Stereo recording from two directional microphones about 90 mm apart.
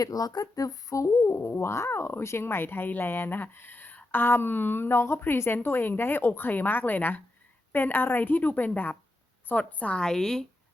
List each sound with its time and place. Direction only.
0.0 s a woman's voice: 45° left (ahead or behind); by 10.4 s 5° left (ahead or behind)